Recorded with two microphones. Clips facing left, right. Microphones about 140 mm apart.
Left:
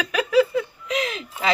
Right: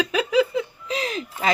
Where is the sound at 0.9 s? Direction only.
35° right (ahead or behind).